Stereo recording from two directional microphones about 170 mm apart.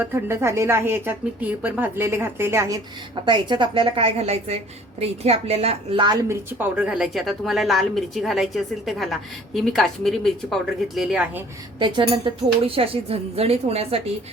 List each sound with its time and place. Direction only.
0.0 s a woman's voice: 15° right (ahead or behind)
3.2 s a woman's voice: 30° right (ahead or behind)
6.2 s speech: 10° right (ahead or behind)
11.8 s a woman's voice: 30° right (ahead or behind)